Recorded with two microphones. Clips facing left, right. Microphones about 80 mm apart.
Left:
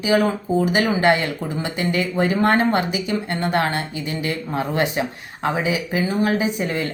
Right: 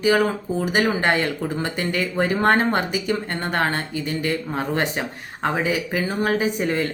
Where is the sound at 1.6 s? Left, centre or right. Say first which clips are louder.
Left 4 dB; right.